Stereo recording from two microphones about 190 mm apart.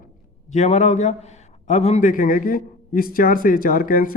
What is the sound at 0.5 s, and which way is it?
A man's voice, 40° left (ahead or behind).